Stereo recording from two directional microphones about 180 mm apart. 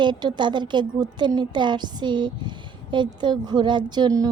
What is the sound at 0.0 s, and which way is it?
A woman's voice, 25° right (ahead or behind).